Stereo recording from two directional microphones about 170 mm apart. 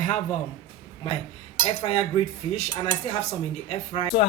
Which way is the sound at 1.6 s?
35° left (ahead or behind).